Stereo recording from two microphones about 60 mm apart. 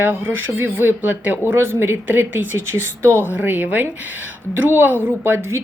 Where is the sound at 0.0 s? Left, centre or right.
Right.